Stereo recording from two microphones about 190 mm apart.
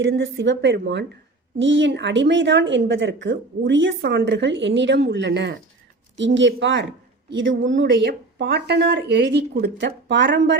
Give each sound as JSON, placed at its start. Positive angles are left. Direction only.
{"t": 0.2, "sound": "speech", "side_deg": -75}